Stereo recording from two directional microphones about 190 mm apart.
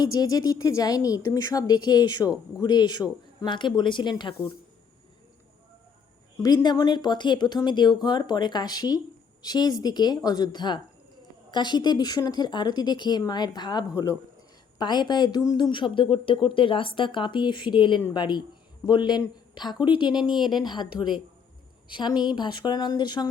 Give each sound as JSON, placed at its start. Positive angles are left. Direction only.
{"t": 0.0, "sound": "speech", "side_deg": 20}
{"t": 6.4, "sound": "speech", "side_deg": 20}
{"t": 20.2, "sound": "a woman's voice", "side_deg": -5}
{"t": 20.5, "sound": "a woman's voice", "side_deg": 25}
{"t": 22.1, "sound": "a woman's voice", "side_deg": -5}
{"t": 22.4, "sound": "speech", "side_deg": 25}